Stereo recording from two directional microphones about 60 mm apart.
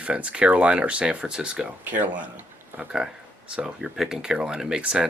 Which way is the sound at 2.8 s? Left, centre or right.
Centre.